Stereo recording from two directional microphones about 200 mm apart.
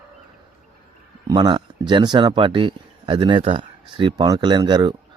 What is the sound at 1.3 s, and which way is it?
Speech, 20° right (ahead or behind).